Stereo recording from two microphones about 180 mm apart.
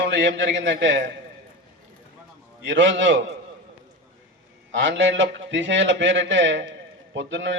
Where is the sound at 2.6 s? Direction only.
90° right.